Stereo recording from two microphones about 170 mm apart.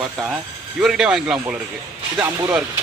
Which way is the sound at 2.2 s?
20° right (ahead or behind).